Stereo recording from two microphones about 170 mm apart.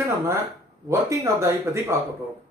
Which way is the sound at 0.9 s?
15° right (ahead or behind).